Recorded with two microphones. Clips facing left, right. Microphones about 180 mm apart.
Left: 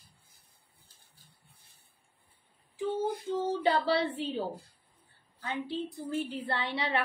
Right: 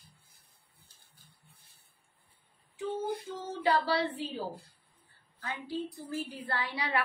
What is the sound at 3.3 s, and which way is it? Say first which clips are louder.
A woman's voice: left 2 dB; 30° left (ahead or behind).